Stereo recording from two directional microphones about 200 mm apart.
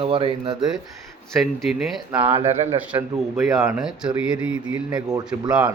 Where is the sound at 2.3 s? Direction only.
35° right (ahead or behind).